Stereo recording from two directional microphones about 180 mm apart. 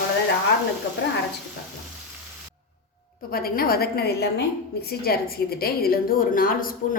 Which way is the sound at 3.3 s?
55° left (ahead or behind).